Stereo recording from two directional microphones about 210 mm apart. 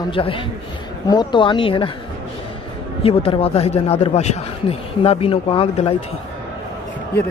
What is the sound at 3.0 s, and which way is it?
Speech, 25° left (ahead or behind).